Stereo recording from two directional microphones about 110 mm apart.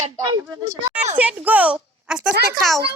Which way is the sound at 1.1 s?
15° right (ahead or behind).